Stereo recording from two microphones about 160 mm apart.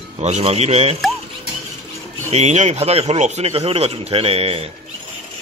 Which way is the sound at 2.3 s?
45° right (ahead or behind).